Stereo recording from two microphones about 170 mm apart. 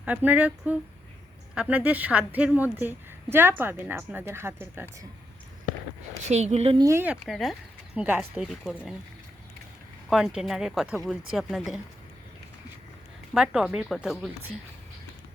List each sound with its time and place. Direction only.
0.0 s a woman's voice: 10° right (ahead or behind)
6.2 s speech: 40° right (ahead or behind)
6.7 s a woman's voice: 20° right (ahead or behind)
7.3 s speech: centre (ahead or behind)
7.9 s a woman's voice: 10° right (ahead or behind)
8.4 s speech: centre (ahead or behind)
10.1 s speech: centre (ahead or behind)
13.3 s speech: 5° right (ahead or behind)